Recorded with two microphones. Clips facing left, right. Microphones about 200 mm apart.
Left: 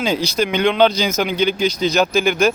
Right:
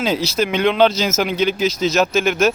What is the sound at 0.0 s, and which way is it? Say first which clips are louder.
Speech: even; centre (ahead or behind).